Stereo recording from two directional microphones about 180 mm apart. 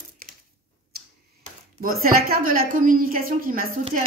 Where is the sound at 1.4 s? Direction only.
50° right (ahead or behind).